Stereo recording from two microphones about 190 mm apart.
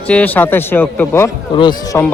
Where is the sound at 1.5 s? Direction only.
25° left (ahead or behind).